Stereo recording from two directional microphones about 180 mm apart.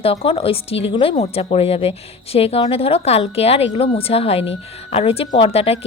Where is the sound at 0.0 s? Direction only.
35° left (ahead or behind).